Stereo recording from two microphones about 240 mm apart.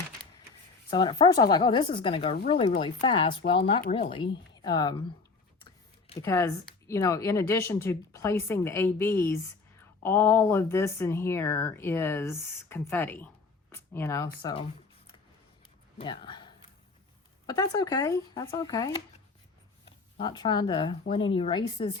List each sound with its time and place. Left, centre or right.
0.9 s a woman's voice: centre
3.9 s speech: left
4.5 s speech: centre
6.1 s speech: centre
16.0 s speech: centre
20.1 s a woman's voice: centre